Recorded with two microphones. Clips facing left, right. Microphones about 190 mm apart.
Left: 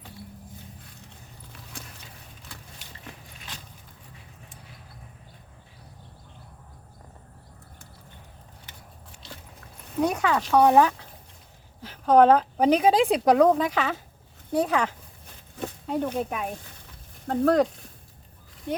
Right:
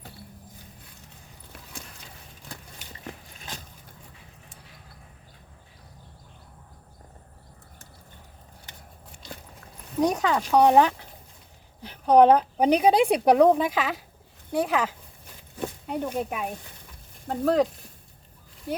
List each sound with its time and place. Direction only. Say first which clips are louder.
10.0 s speech: right 1 dB; 20° right (ahead or behind)
14.5 s speech: left 1 dB; 5° right (ahead or behind)